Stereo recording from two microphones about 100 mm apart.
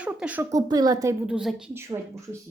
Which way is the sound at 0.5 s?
40° right (ahead or behind).